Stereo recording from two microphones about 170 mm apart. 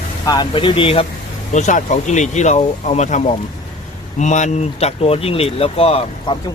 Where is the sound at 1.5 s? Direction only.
45° left (ahead or behind).